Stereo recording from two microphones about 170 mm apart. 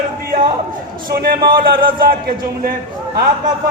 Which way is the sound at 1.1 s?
65° right (ahead or behind).